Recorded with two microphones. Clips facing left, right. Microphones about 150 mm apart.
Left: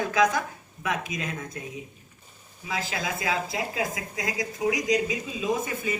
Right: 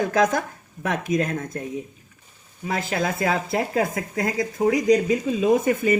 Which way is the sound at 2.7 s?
50° right (ahead or behind).